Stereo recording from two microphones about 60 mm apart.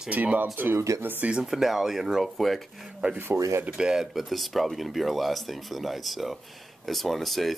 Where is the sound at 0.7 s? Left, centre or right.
Right.